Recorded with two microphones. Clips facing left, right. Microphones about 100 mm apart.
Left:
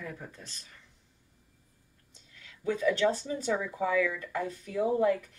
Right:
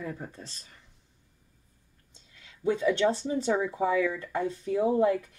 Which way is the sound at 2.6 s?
25° right (ahead or behind).